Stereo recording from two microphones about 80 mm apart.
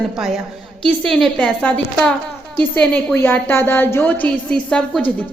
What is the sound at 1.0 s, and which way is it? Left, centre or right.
Speech, centre.